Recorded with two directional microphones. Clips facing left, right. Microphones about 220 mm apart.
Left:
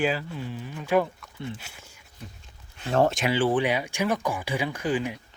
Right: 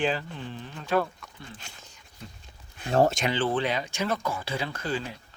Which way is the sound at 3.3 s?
15° left (ahead or behind).